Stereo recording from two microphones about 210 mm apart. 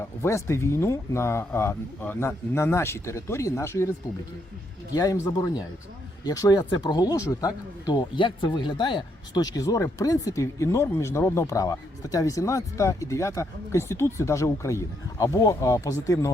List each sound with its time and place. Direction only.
0.2 s speech: 15° left (ahead or behind)
4.9 s speech: 15° left (ahead or behind)